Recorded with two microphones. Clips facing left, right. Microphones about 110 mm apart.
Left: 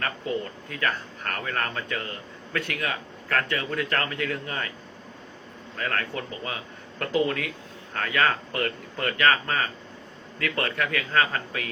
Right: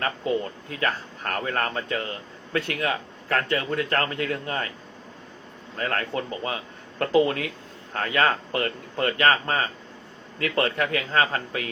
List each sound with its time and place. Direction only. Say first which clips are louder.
0.7 s speech: right 1 dB; 30° right (ahead or behind)
5.7 s speech: right 3 dB; 30° right (ahead or behind)